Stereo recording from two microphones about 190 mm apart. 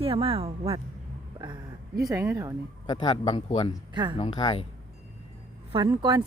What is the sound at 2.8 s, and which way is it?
Speech, 25° left (ahead or behind).